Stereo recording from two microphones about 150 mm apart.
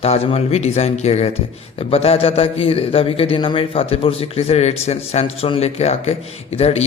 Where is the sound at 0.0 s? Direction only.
45° left (ahead or behind).